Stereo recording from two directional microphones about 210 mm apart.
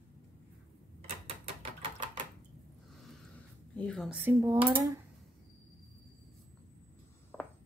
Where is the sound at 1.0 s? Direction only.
30° right (ahead or behind).